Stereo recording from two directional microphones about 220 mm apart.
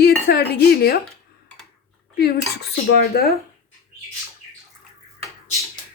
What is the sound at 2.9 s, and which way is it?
Speech, 45° left (ahead or behind).